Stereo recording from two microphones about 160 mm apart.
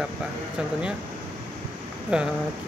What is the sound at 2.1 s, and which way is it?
Speech, 5° right (ahead or behind).